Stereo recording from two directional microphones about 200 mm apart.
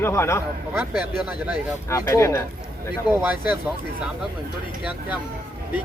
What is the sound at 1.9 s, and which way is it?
Speech, 15° left (ahead or behind).